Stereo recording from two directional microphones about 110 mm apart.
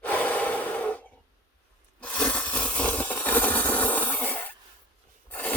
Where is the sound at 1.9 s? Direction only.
10° left (ahead or behind).